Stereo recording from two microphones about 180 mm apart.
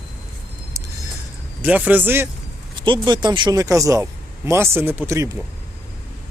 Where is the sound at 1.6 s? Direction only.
10° right (ahead or behind).